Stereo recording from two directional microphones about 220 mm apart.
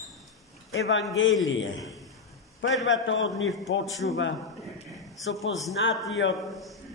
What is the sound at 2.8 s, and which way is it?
Speech, 60° left (ahead or behind).